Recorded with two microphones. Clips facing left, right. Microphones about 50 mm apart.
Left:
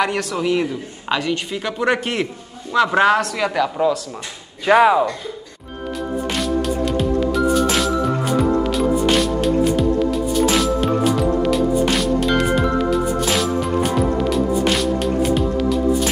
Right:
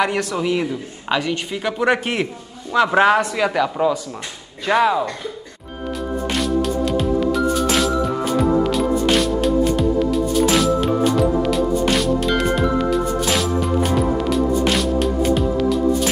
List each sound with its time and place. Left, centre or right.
0.0 s a woman's voice: centre
4.6 s speech: centre
6.2 s music: centre